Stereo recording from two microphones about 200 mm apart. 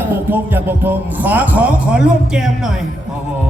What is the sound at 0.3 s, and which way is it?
A man's voice, 10° right (ahead or behind).